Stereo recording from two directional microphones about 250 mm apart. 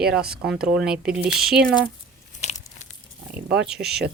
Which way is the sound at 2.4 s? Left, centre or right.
Left.